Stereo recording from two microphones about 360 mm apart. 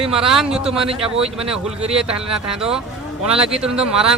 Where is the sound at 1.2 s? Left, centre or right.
Centre.